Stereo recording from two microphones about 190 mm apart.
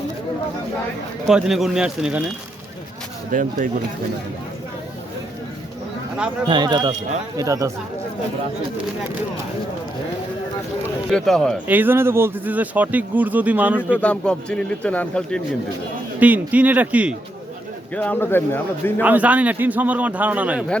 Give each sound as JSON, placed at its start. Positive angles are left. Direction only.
{"t": 1.3, "sound": "speech", "side_deg": -5}
{"t": 3.6, "sound": "speech", "side_deg": -40}
{"t": 6.5, "sound": "speech", "side_deg": -20}
{"t": 11.1, "sound": "speech", "side_deg": 5}
{"t": 11.7, "sound": "speech", "side_deg": -10}
{"t": 14.0, "sound": "speech", "side_deg": 5}
{"t": 16.2, "sound": "speech", "side_deg": -10}
{"t": 17.9, "sound": "a man's voice", "side_deg": 10}
{"t": 19.0, "sound": "speech", "side_deg": -10}